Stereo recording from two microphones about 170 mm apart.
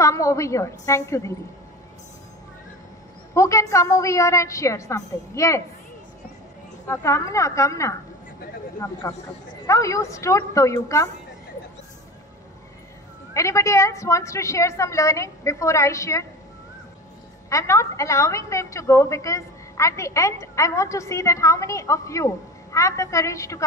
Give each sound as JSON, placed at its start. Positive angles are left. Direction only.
{"t": 0.0, "sound": "a woman's voice", "side_deg": 20}
{"t": 3.3, "sound": "a woman's voice", "side_deg": 20}
{"t": 6.9, "sound": "a woman's voice", "side_deg": 15}
{"t": 13.3, "sound": "a woman's voice", "side_deg": 15}
{"t": 17.5, "sound": "a woman's voice", "side_deg": 20}